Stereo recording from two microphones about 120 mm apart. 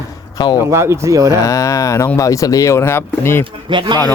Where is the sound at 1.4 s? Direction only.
25° left (ahead or behind).